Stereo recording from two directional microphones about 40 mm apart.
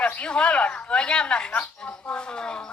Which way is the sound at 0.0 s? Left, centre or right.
Left.